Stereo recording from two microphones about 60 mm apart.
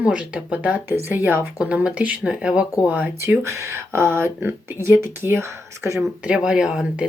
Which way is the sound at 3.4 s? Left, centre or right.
Right.